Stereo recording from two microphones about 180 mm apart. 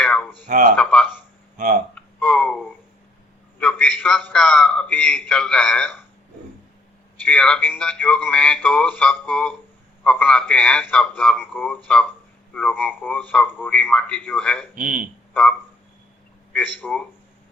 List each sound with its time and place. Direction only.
0.0 s a sound: 5° left (ahead or behind)
0.4 s speech: 50° right (ahead or behind)
0.8 s speech: 5° left (ahead or behind)
1.5 s speech: 45° right (ahead or behind)
2.0 s a sound: 5° left (ahead or behind)
3.6 s a man's voice: 10° left (ahead or behind)
7.3 s a man's voice: 5° left (ahead or behind)
14.8 s speech: 45° right (ahead or behind)
15.3 s speech: 5° left (ahead or behind)